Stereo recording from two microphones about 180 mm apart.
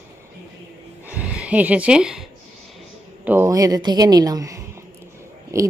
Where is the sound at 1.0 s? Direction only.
5° right (ahead or behind).